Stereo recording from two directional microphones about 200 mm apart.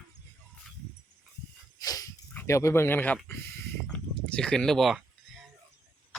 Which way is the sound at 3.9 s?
5° left (ahead or behind).